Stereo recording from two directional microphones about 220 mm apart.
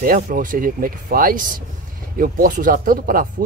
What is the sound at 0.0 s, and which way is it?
Speech, 40° right (ahead or behind).